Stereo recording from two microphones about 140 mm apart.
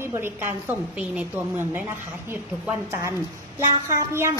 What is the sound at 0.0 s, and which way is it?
A woman's voice, 15° right (ahead or behind).